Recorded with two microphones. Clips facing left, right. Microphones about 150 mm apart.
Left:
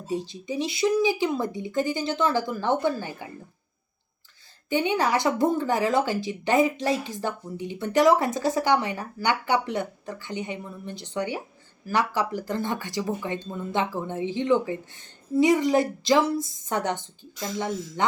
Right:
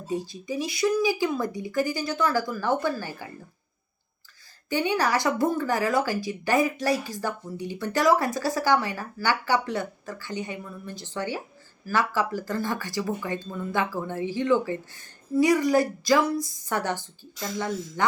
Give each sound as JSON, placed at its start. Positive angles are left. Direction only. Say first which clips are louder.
{"t": 0.1, "sound": "a woman's voice", "louder": "even", "side_deg": 20}
{"t": 4.7, "sound": "a woman's voice", "louder": "left 1 dB", "side_deg": 20}